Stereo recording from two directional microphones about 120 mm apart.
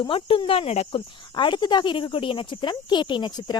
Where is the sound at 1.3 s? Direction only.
40° left (ahead or behind).